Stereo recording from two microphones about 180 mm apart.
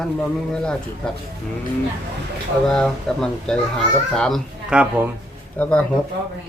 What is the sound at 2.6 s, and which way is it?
A child's voice, 5° left (ahead or behind).